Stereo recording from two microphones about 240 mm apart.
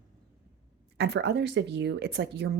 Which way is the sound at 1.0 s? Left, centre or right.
Right.